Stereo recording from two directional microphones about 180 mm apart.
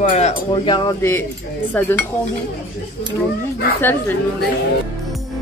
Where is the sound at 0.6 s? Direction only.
25° left (ahead or behind).